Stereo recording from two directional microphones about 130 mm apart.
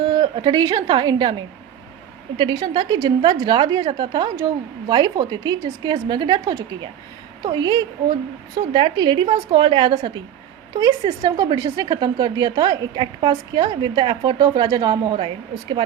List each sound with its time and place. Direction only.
0.0 s a woman's voice: 35° right (ahead or behind)